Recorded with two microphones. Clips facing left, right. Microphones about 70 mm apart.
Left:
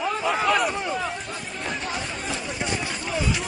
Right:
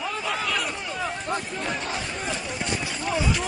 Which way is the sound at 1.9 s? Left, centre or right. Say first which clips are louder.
Even; centre.